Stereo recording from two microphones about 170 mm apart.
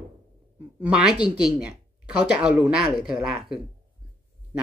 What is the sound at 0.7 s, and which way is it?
Speech, 5° right (ahead or behind).